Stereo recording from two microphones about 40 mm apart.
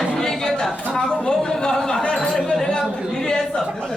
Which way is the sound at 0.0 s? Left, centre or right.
Centre.